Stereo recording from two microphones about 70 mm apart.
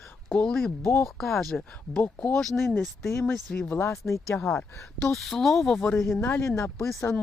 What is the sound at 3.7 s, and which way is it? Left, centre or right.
Speech, left.